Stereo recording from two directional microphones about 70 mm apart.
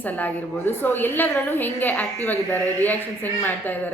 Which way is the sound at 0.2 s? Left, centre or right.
Left.